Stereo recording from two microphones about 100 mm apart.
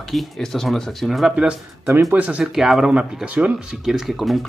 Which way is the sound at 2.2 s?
15° right (ahead or behind).